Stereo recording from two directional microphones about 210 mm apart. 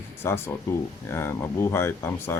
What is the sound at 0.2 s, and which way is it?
Speech, 10° left (ahead or behind).